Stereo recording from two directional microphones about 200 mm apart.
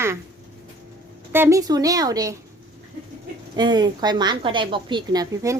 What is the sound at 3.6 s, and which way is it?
Speech, 20° right (ahead or behind).